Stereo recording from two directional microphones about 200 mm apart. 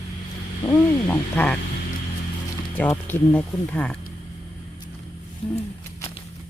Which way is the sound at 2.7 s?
10° left (ahead or behind).